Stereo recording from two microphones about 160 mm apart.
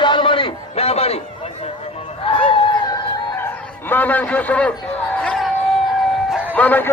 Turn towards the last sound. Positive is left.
turn(degrees=10)  # may be behind; listen again after turning